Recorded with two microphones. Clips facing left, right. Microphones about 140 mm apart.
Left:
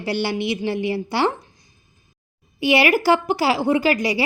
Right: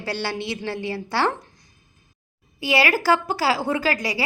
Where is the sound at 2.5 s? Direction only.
20° left (ahead or behind).